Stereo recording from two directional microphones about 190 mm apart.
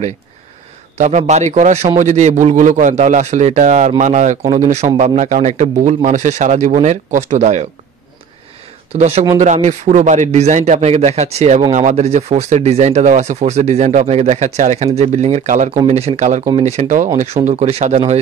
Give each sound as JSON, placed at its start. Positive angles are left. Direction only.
{"t": 0.9, "sound": "speech", "side_deg": -40}
{"t": 8.9, "sound": "speech", "side_deg": -35}